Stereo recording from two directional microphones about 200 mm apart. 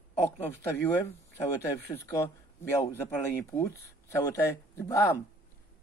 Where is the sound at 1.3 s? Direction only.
15° left (ahead or behind).